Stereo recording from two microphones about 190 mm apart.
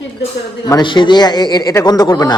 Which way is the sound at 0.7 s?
25° left (ahead or behind).